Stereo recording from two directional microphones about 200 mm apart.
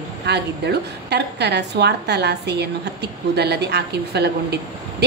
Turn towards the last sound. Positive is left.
turn(degrees=-55)  # may be behind; listen again after turning